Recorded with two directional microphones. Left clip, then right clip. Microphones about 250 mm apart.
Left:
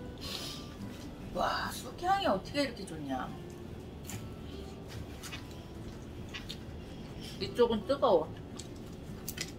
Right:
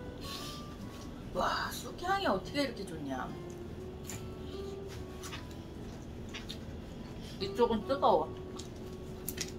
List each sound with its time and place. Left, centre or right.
1.3 s a woman's voice: centre
7.3 s a woman's voice: centre